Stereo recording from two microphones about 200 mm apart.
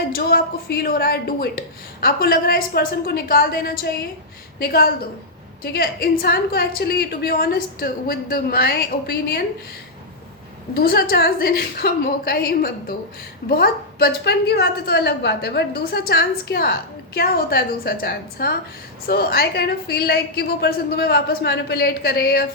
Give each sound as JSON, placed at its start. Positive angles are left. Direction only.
{"t": 0.1, "sound": "speech", "side_deg": 50}
{"t": 10.8, "sound": "speech", "side_deg": 50}